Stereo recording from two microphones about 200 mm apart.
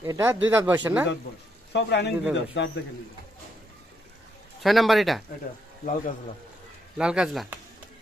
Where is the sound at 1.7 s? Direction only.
60° left (ahead or behind).